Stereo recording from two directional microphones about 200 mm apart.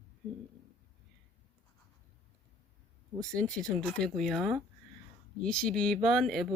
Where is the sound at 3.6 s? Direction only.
5° left (ahead or behind).